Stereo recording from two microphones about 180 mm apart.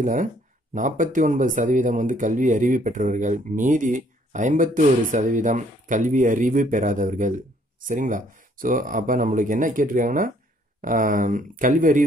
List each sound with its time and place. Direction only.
0.0 s speech: 45° right (ahead or behind)